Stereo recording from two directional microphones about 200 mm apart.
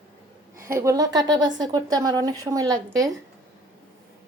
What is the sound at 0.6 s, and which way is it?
A woman's voice, 15° right (ahead or behind).